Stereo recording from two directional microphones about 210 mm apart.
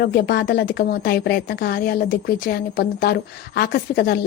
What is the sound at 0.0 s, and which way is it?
A woman's voice, 50° left (ahead or behind).